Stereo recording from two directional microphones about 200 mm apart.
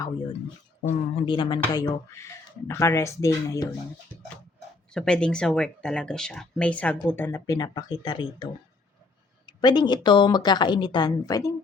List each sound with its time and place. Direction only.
0.9 s speech: 25° left (ahead or behind)
4.9 s speech: 5° left (ahead or behind); by 8.2 s 20° left (ahead or behind)
9.6 s speech: 20° left (ahead or behind)